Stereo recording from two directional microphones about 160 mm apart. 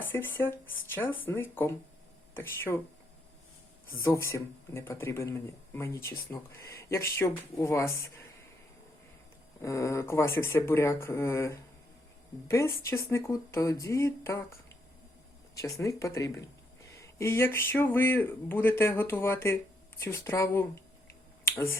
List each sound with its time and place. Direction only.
0.0 s speech: 10° left (ahead or behind)
3.9 s speech: 15° left (ahead or behind)
9.6 s speech: 20° left (ahead or behind)
15.5 s speech: 20° left (ahead or behind)